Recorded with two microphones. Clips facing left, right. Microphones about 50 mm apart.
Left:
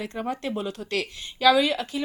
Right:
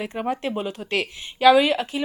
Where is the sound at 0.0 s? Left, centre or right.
Right.